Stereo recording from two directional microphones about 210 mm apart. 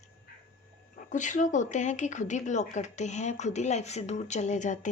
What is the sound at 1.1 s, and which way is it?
Speech, 35° left (ahead or behind).